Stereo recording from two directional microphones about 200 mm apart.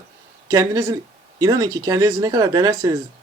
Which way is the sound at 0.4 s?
15° right (ahead or behind).